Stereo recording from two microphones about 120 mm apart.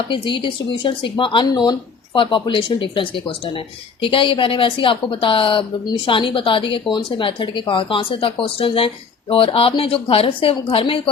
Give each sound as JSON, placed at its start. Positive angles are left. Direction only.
{"t": 0.1, "sound": "a woman's voice", "side_deg": 40}